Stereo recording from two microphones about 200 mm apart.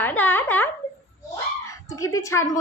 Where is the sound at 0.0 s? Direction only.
10° left (ahead or behind).